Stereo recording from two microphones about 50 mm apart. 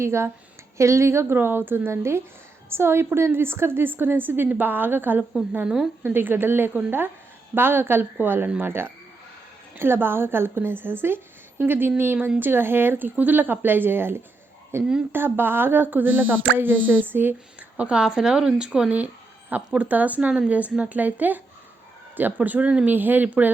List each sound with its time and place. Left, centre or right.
0.0 s a woman's voice: right
0.8 s speech: right
1.9 s a woman's voice: right
5.6 s speech: centre
6.1 s speech: right
17.6 s speech: right
18.0 s speech: centre
18.9 s a sound: right
19.7 s a woman's voice: right